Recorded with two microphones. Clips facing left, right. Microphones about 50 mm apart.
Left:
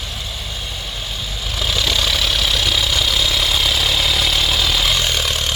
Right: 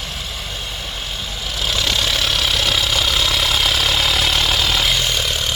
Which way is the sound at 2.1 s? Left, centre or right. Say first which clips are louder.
Even; right.